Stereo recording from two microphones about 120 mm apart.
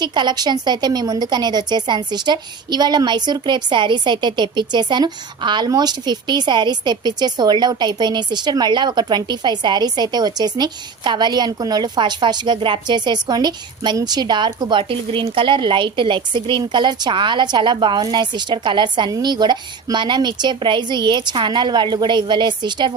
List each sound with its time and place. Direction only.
0.0 s a woman's voice: 40° right (ahead or behind)